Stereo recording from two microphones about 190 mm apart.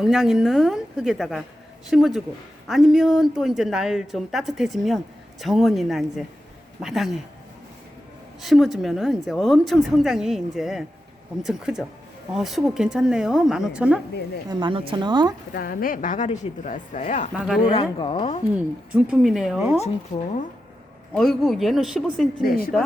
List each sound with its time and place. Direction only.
0.0 s speech: centre (ahead or behind)
8.4 s speech: centre (ahead or behind)
14.5 s a woman's voice: 25° right (ahead or behind)
15.5 s a woman's voice: 50° left (ahead or behind)
17.3 s speech: centre (ahead or behind)
17.6 s a woman's voice: 30° left (ahead or behind)
18.5 s speech: 5° right (ahead or behind)
21.1 s speech: centre (ahead or behind)
22.4 s a woman's voice: 50° left (ahead or behind)